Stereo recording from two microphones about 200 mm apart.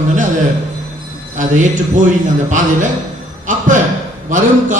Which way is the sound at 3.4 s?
40° right (ahead or behind).